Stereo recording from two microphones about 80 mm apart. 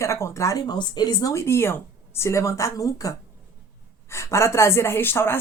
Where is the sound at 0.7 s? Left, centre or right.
Left.